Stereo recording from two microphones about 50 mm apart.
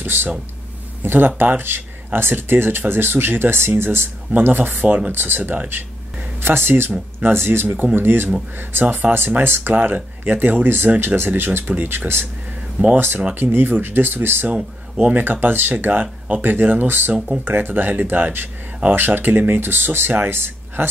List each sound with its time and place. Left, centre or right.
0.0 s speech: right
4.8 s speech: right
5.1 s speech: right
5.4 s speech: right
6.4 s speech: right
6.9 s speech: right
7.4 s speech: right
8.8 s speech: right
12.9 s speech: right
14.5 s speech: right
15.4 s speech: right